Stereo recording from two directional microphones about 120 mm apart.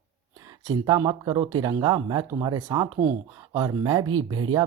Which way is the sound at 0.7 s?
35° right (ahead or behind).